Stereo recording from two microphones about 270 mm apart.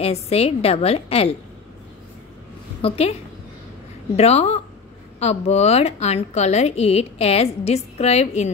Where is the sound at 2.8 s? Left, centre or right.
Left.